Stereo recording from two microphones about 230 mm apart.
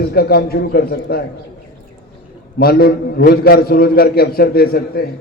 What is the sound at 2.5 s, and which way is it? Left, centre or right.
A man's voice, left.